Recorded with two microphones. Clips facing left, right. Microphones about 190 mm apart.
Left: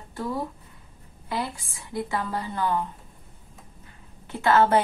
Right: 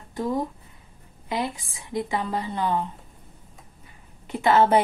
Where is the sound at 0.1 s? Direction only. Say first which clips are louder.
Right 4 dB; 15° right (ahead or behind).